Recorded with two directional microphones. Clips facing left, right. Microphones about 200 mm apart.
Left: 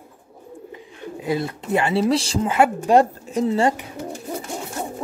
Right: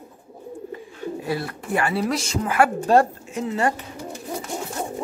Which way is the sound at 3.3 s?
30° left (ahead or behind).